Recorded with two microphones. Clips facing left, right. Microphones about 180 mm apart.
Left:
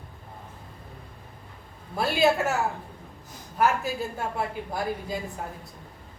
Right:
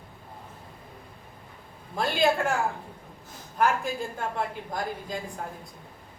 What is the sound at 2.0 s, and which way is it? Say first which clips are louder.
Speech: left 2 dB; 5° left (ahead or behind).